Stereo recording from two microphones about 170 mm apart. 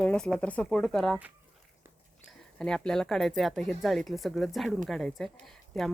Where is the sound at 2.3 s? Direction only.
5° left (ahead or behind).